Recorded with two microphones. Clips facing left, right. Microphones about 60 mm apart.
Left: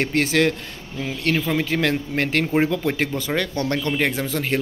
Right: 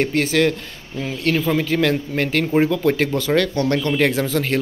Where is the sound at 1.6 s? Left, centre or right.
Left.